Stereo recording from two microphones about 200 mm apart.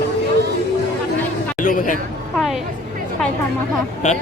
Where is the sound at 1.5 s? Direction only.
40° left (ahead or behind).